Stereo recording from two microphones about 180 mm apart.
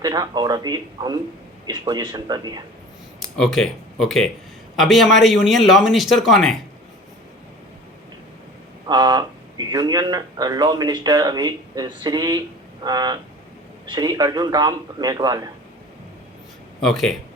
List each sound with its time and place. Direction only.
0.0 s speech: 20° right (ahead or behind)
3.3 s speech: centre (ahead or behind)
8.9 s speech: 25° right (ahead or behind)
16.8 s speech: centre (ahead or behind)